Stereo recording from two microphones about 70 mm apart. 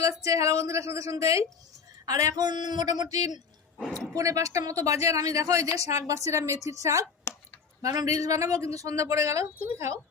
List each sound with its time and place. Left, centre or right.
0.0 s speech: right
2.0 s speech: right
3.9 s speech: right
7.3 s a sound: left
7.8 s speech: right